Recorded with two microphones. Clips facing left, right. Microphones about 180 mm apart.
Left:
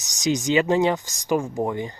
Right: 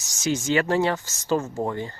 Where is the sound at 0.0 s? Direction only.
20° left (ahead or behind).